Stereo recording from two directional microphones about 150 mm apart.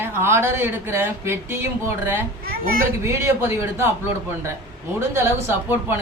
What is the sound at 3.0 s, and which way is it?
Speech, 15° right (ahead or behind).